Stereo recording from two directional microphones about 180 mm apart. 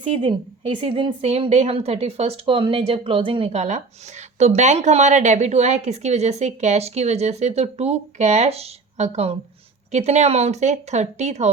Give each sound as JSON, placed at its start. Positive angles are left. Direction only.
{"t": 0.0, "sound": "a woman's voice", "side_deg": -30}